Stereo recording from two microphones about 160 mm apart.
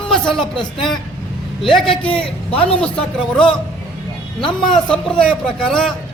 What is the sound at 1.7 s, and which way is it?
Speech, centre (ahead or behind).